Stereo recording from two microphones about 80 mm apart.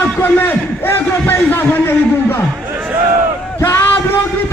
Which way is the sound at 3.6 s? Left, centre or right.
Left.